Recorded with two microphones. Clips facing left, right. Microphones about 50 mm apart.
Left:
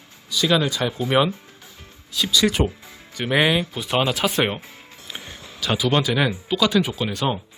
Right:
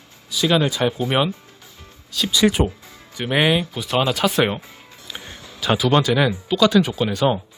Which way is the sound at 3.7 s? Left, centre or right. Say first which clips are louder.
Right 1 dB; centre.